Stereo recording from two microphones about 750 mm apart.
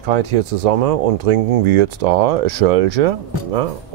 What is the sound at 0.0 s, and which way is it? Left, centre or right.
Speech, right.